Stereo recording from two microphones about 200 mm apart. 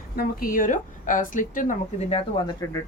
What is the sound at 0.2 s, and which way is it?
A woman's voice, 45° left (ahead or behind).